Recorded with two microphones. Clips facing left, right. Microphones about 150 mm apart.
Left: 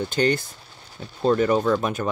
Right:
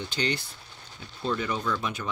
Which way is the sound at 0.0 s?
50° left (ahead or behind).